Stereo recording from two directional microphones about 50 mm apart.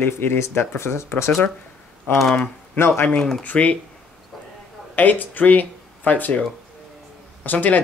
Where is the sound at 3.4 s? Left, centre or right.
Left.